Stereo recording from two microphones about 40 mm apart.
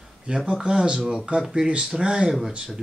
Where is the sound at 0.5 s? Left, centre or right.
Right.